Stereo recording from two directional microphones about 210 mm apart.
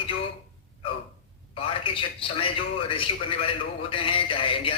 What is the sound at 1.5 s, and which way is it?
A man's voice, 25° left (ahead or behind).